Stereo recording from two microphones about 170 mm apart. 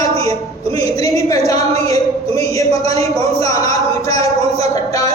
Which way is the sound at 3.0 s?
20° left (ahead or behind).